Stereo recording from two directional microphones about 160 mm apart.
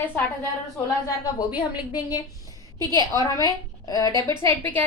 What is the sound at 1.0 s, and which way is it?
A woman's voice, 25° left (ahead or behind).